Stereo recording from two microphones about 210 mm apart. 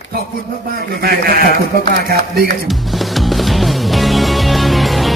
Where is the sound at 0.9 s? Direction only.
45° right (ahead or behind).